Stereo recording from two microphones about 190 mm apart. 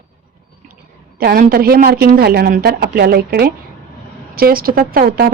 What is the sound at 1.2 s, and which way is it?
A woman's voice, 55° right (ahead or behind).